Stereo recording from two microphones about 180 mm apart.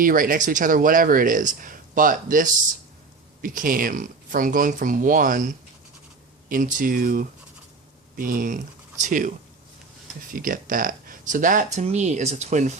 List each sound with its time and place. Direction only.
0.0 s speech: 50° right (ahead or behind)
10.3 s speech: 50° right (ahead or behind)